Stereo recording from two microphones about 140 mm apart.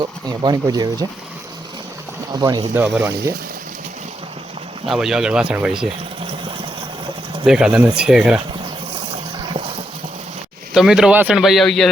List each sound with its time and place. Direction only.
0.3 s speech: 30° right (ahead or behind)
2.3 s speech: 30° right (ahead or behind)
2.9 s speech: 15° right (ahead or behind)
4.9 s speech: 5° right (ahead or behind)
7.4 s speech: 5° right (ahead or behind)
10.8 s speech: 5° right (ahead or behind)